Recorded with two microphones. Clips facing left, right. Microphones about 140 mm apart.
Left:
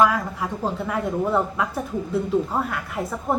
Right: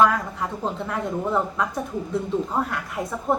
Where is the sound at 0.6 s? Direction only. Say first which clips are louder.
Left 3 dB; 5° left (ahead or behind).